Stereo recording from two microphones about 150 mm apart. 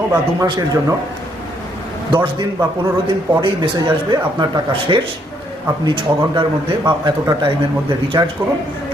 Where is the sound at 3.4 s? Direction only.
30° right (ahead or behind).